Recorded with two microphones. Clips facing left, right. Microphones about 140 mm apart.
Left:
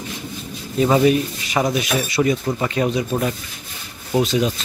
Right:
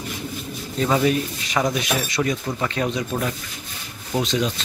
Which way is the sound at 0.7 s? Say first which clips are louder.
Left 5 dB; 20° left (ahead or behind).